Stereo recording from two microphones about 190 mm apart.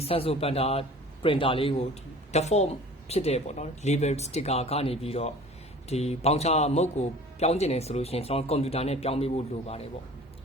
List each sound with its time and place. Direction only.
0.0 s a man's voice: 30° left (ahead or behind)